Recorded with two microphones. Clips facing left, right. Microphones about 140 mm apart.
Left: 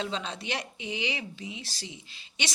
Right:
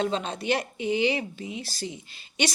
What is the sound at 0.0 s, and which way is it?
Speech, 50° right (ahead or behind).